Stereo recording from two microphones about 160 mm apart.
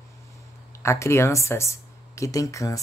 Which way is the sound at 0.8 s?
20° left (ahead or behind).